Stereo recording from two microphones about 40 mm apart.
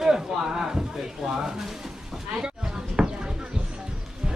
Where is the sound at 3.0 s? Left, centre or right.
Right.